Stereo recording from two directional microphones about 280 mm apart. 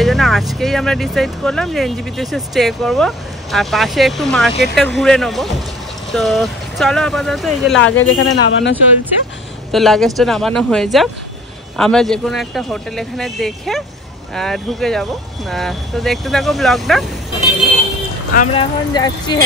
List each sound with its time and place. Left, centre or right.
0.0 s speech: centre
7.7 s speech: left
9.7 s speech: centre
18.3 s speech: left